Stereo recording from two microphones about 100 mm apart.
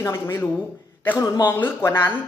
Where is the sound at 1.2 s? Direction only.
45° left (ahead or behind).